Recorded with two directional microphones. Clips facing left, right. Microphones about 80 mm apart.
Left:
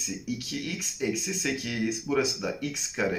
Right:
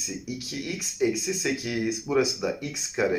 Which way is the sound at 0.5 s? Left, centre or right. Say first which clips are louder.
Right 1 dB; centre.